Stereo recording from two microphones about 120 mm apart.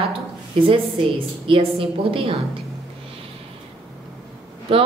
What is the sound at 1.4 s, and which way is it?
Speech, 50° right (ahead or behind).